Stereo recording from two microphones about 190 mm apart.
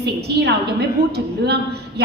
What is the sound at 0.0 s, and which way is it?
A woman's voice, 60° right (ahead or behind).